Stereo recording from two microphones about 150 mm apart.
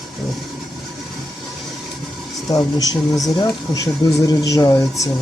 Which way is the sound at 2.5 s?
25° left (ahead or behind).